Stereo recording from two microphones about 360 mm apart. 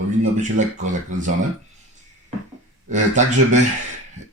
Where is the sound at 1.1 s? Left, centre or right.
Right.